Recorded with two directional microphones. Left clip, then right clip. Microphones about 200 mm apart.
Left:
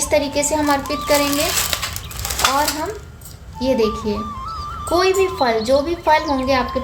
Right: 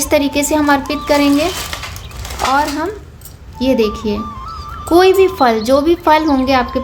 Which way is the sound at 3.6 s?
55° right (ahead or behind).